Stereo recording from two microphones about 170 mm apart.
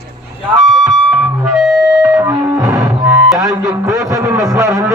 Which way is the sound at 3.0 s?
10° right (ahead or behind).